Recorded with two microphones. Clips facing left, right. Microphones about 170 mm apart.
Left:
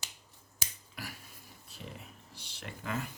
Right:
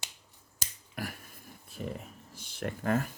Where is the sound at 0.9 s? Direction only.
50° right (ahead or behind).